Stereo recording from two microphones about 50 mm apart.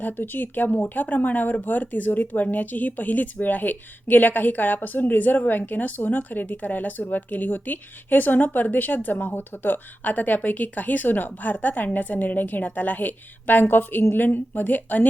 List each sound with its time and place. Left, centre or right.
0.0 s speech: left